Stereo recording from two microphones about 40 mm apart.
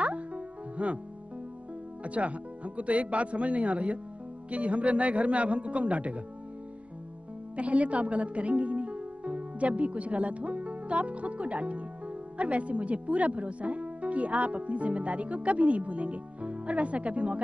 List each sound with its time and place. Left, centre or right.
0.0 s music: right
2.0 s speech: right
7.5 s a woman's voice: right